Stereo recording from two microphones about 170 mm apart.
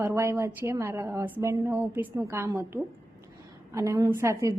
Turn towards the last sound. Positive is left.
turn(degrees=-15)  # may be behind; listen again after turning